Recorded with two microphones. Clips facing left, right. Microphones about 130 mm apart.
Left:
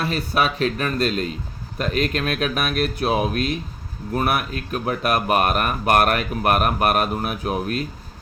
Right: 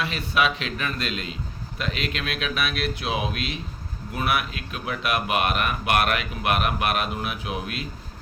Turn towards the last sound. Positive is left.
turn(degrees=45)  # may be behind; listen again after turning